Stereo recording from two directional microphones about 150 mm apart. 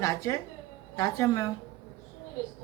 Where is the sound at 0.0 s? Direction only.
20° left (ahead or behind).